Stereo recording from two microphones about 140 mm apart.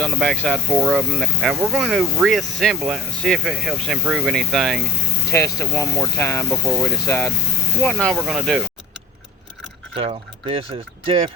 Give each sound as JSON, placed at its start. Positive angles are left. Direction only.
{"t": 0.0, "sound": "speech", "side_deg": 0}
{"t": 5.3, "sound": "speech", "side_deg": 20}
{"t": 6.5, "sound": "speech", "side_deg": 0}
{"t": 6.8, "sound": "speech", "side_deg": 20}
{"t": 7.8, "sound": "speech", "side_deg": 5}
{"t": 9.9, "sound": "speech", "side_deg": -40}